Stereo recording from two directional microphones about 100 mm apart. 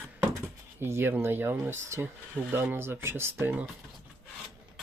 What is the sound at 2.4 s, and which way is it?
Speech, 10° right (ahead or behind).